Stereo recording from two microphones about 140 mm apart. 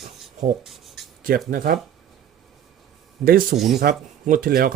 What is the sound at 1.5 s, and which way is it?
Speech, 90° right.